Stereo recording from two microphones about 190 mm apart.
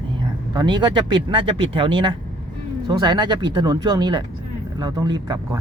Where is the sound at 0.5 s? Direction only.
25° right (ahead or behind).